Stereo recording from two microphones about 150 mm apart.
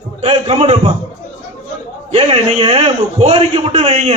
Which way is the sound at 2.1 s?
35° right (ahead or behind).